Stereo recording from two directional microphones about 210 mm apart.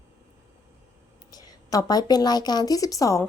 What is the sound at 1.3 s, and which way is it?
A woman's voice, 20° left (ahead or behind).